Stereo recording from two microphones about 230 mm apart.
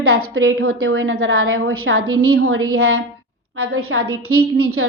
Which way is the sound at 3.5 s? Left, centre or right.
Right.